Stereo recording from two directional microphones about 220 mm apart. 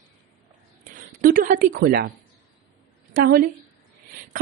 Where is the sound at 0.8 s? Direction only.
40° right (ahead or behind).